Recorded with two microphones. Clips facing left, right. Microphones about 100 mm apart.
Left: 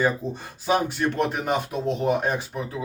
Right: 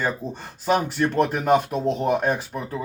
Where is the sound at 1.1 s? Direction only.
50° right (ahead or behind).